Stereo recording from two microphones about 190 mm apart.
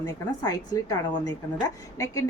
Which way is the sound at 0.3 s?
20° left (ahead or behind).